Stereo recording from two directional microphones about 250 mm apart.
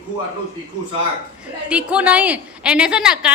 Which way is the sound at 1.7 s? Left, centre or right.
Centre.